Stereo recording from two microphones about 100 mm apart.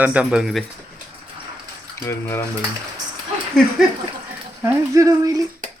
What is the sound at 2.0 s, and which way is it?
Frying, 25° left (ahead or behind).